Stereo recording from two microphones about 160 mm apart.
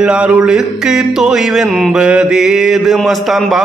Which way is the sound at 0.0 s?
5° right (ahead or behind).